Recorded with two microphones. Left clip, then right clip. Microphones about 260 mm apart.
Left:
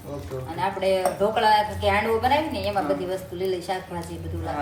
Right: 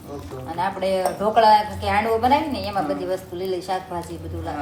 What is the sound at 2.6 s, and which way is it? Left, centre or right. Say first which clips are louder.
A woman's voice: even; centre.